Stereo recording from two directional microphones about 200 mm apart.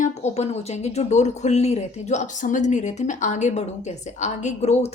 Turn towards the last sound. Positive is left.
turn(degrees=35)  # may be behind; listen again after turning